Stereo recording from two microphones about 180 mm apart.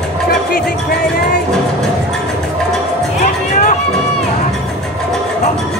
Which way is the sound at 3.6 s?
40° left (ahead or behind).